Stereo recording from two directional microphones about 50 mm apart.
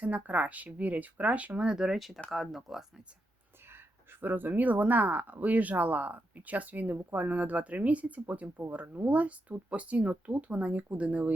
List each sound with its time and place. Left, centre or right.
0.0 s speech: right
1.8 s speech: centre
4.2 s speech: right